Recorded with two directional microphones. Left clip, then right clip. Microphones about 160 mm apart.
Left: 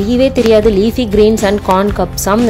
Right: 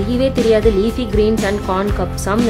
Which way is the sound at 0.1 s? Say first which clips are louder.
Left 5 dB; 25° left (ahead or behind).